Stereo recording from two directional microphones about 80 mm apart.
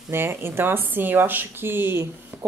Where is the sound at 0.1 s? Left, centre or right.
Right.